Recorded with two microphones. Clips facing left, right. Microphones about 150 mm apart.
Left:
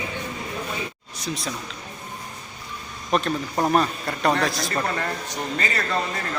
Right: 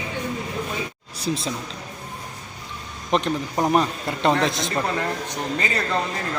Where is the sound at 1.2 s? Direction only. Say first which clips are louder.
Right 4 dB; 25° right (ahead or behind).